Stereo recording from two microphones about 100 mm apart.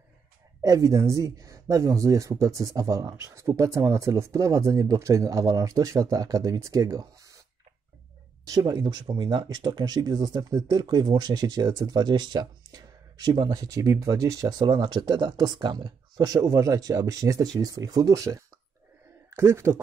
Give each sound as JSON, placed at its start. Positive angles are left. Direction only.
{"t": 0.6, "sound": "speech", "side_deg": -35}
{"t": 8.5, "sound": "speech", "side_deg": -40}
{"t": 16.3, "sound": "speech", "side_deg": -30}